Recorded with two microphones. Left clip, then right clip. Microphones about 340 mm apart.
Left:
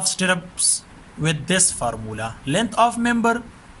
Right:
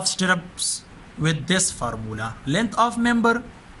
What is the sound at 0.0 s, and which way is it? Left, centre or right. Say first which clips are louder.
Speech: left 1 dB; centre.